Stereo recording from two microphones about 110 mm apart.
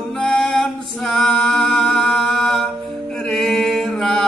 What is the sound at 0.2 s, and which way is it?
Singing, 5° left (ahead or behind).